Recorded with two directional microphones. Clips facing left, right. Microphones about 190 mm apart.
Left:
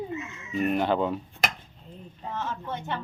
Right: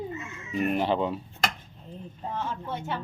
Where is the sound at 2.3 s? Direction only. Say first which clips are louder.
Even; 10° right (ahead or behind).